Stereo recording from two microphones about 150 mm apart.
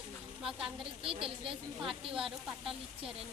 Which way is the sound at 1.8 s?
5° right (ahead or behind).